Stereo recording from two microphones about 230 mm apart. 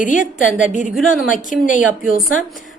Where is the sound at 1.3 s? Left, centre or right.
Left.